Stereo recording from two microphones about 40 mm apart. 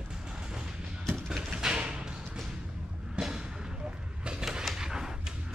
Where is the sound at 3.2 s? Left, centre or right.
Centre.